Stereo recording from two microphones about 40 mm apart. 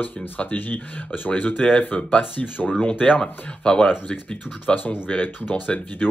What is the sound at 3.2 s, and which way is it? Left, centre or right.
Speech, left.